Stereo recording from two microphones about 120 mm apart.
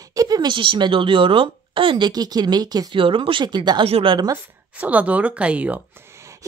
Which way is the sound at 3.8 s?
50° right (ahead or behind).